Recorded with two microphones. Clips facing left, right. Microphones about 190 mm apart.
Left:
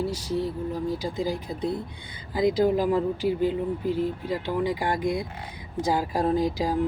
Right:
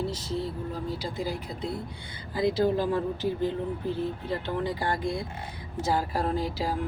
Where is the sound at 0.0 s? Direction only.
10° left (ahead or behind).